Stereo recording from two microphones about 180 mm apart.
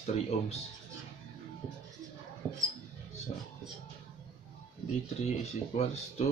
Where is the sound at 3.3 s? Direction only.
35° left (ahead or behind).